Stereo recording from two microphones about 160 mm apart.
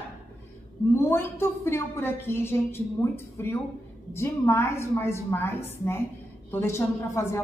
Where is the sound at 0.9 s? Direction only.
15° left (ahead or behind).